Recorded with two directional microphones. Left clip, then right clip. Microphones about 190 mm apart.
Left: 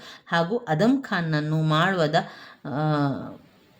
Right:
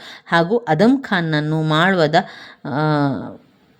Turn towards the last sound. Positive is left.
turn(degrees=-35)  # may be behind; listen again after turning